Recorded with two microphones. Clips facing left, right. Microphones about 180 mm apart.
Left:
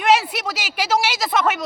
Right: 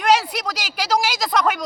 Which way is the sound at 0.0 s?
5° left (ahead or behind).